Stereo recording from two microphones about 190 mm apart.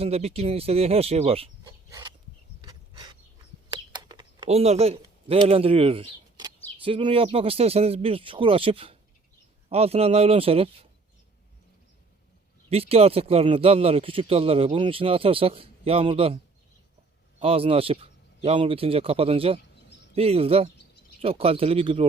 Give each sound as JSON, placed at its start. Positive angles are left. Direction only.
{"t": 0.0, "sound": "speech", "side_deg": -30}
{"t": 1.6, "sound": "a sound", "side_deg": -20}
{"t": 3.7, "sound": "bird", "side_deg": -25}
{"t": 4.4, "sound": "speech", "side_deg": -35}
{"t": 12.7, "sound": "speech", "side_deg": -30}
{"t": 17.4, "sound": "speech", "side_deg": -30}